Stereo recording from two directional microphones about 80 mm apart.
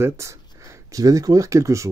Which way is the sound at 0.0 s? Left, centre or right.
Right.